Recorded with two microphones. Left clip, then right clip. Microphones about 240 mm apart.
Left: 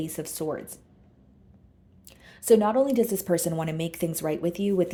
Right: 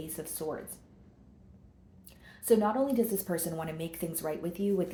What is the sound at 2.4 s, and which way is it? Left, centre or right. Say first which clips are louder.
A woman's voice: left 6 dB; left.